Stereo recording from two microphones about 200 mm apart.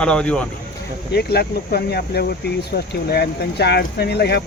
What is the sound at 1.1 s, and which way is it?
Speech, 50° left (ahead or behind).